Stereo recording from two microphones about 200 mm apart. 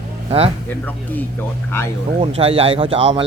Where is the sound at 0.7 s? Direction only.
10° left (ahead or behind).